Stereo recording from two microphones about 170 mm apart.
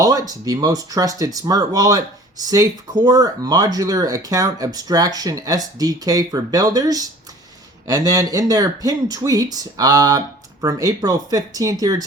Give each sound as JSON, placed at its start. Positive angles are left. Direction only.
{"t": 0.0, "sound": "speech", "side_deg": -20}